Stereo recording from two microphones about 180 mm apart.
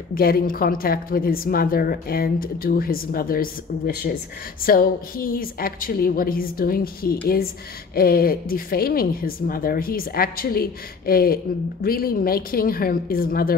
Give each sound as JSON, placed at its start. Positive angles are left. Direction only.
{"t": 0.1, "sound": "a woman's voice", "side_deg": 55}